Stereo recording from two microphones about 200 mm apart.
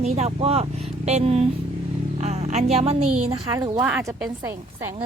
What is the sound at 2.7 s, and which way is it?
Speech, 30° right (ahead or behind).